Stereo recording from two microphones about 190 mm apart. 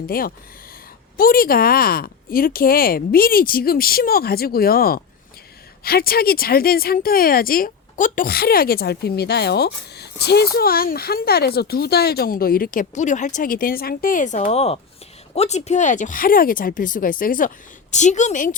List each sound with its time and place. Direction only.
0.1 s speech: 50° left (ahead or behind)